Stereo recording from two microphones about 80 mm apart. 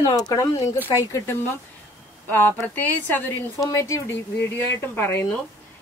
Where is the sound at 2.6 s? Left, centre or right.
Left.